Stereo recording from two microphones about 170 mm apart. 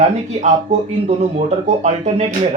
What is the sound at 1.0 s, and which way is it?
Speech, 40° right (ahead or behind).